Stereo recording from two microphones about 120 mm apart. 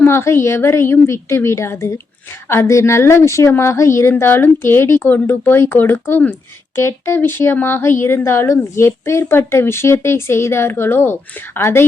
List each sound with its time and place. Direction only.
0.0 s speech: 20° left (ahead or behind)